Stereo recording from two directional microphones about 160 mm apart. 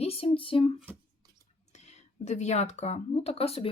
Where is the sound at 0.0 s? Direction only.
40° left (ahead or behind).